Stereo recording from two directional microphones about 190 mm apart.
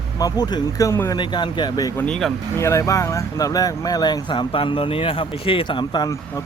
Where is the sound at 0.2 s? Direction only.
20° left (ahead or behind).